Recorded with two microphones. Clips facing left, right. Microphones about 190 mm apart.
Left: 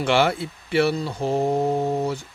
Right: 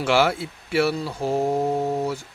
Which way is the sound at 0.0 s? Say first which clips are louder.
Even; 5° right (ahead or behind).